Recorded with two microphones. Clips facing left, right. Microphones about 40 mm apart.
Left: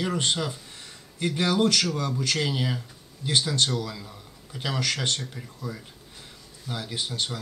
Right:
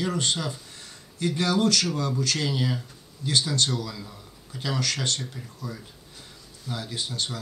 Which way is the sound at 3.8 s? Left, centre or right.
Centre.